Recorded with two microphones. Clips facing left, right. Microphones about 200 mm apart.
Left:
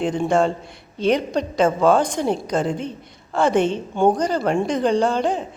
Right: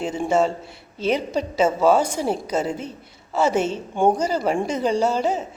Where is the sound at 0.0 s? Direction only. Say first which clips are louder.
Left 2 dB; 5° right (ahead or behind).